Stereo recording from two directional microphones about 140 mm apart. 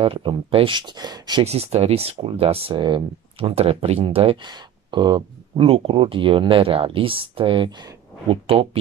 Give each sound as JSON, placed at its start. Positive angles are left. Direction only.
{"t": 0.0, "sound": "speech", "side_deg": -40}
{"t": 1.4, "sound": "speech", "side_deg": -45}